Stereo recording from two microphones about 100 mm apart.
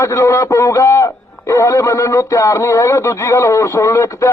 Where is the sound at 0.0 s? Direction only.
30° left (ahead or behind).